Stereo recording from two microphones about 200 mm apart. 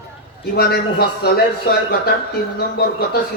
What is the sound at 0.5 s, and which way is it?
Speech, 55° left (ahead or behind).